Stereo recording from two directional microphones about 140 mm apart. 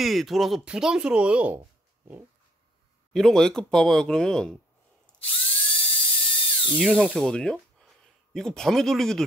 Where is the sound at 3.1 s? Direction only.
5° left (ahead or behind).